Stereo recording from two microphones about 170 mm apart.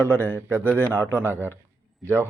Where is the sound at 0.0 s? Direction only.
15° right (ahead or behind).